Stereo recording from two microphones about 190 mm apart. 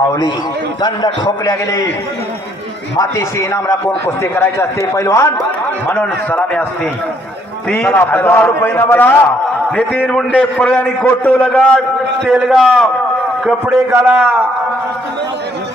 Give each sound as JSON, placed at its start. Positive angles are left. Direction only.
{"t": 0.8, "sound": "a man's voice", "side_deg": 25}
{"t": 3.0, "sound": "a man's voice", "side_deg": 15}
{"t": 7.7, "sound": "a man's voice", "side_deg": 5}